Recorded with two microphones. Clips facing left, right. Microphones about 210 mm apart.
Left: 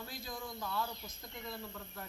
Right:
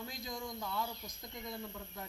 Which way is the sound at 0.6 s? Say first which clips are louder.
Even; 15° right (ahead or behind).